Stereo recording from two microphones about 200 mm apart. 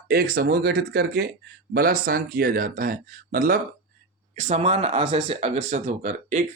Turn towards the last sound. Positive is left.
turn(degrees=-35)  # may be behind; listen again after turning